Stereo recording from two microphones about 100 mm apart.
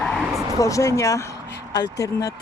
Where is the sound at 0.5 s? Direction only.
35° left (ahead or behind).